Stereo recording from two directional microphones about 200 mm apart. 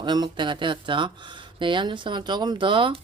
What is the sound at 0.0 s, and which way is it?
A woman's voice, 20° right (ahead or behind).